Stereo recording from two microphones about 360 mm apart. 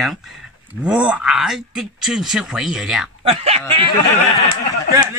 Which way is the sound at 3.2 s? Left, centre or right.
Centre.